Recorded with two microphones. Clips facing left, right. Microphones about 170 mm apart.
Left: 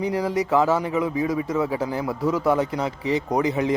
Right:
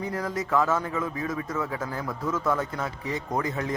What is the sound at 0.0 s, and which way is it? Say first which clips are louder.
A man's voice: left 7 dB; 15° left (ahead or behind).